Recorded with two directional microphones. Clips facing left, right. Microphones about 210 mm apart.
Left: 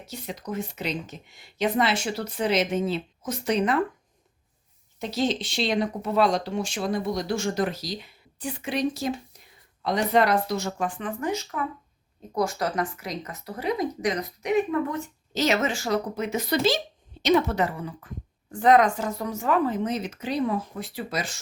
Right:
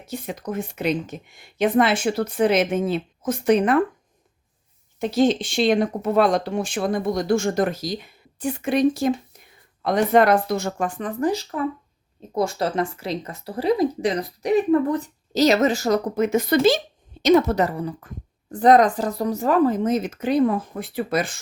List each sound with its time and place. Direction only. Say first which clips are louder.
0.1 s speech: right 5 dB; 50° right (ahead or behind)
4.9 s speech: right 7 dB; 50° right (ahead or behind)
17.2 s speech: right 5 dB; 40° right (ahead or behind)